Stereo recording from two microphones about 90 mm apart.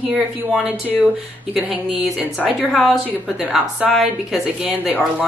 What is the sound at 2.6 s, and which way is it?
Speech, 5° right (ahead or behind).